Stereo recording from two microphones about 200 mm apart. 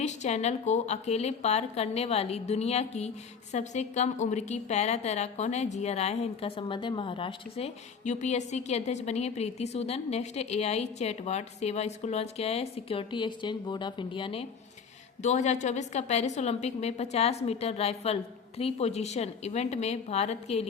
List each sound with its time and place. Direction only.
0.0 s a woman's voice: 35° left (ahead or behind)